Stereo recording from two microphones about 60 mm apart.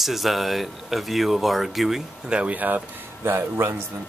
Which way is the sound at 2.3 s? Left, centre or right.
Right.